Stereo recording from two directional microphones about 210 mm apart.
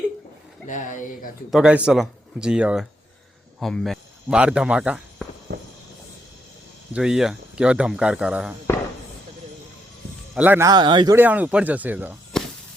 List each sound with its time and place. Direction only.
0.7 s speech: 35° left (ahead or behind)
1.5 s speech: 5° right (ahead or behind)
6.9 s speech: 5° right (ahead or behind)
10.3 s speech: 10° right (ahead or behind)
12.3 s a sound: centre (ahead or behind)